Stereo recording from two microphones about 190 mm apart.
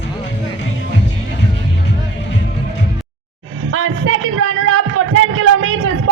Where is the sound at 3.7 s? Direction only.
90° right.